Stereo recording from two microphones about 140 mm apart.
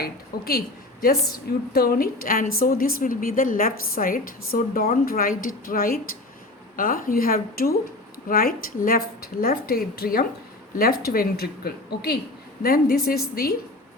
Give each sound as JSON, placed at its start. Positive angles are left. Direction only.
{"t": 0.3, "sound": "a woman's voice", "side_deg": 90}